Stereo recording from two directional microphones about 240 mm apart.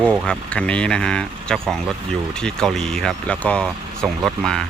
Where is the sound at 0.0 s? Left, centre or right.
Centre.